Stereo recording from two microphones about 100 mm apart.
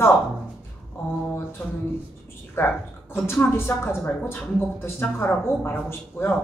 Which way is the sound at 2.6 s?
25° left (ahead or behind).